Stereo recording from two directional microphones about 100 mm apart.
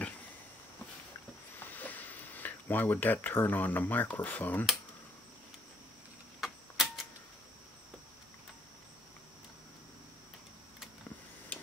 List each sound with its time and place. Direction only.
1.6 s speech: 15° left (ahead or behind)
6.4 s tick-tock: centre (ahead or behind)